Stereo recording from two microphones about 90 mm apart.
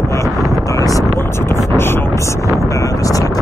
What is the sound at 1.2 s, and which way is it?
Vehicle, 30° left (ahead or behind).